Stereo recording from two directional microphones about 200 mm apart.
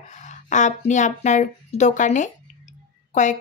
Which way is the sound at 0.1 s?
35° left (ahead or behind).